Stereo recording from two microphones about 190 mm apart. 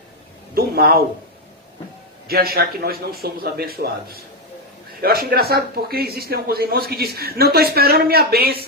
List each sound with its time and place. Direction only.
0.5 s speech: 55° right (ahead or behind)
2.2 s a man's voice: 55° right (ahead or behind)